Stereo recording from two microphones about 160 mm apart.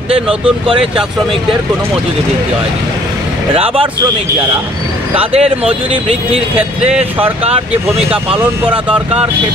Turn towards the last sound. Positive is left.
turn(degrees=-40)  # may be behind; listen again after turning